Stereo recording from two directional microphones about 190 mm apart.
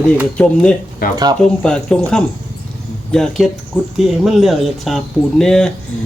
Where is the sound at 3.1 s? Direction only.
Centre (ahead or behind).